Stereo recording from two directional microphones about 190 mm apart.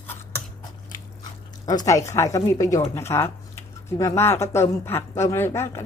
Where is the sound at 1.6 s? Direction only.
20° left (ahead or behind).